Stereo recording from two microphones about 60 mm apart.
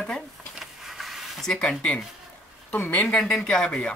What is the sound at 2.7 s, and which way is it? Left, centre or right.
Speech, left.